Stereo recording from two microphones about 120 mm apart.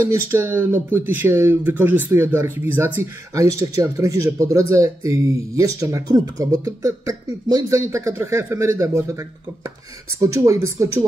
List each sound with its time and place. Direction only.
0.0 s speech: 20° right (ahead or behind)